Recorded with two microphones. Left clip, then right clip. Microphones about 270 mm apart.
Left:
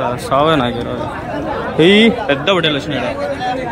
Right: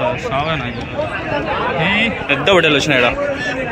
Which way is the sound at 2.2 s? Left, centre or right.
Centre.